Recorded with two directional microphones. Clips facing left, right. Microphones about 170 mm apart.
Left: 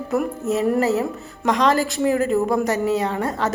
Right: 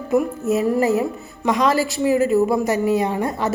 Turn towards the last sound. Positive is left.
turn(degrees=-15)  # may be behind; listen again after turning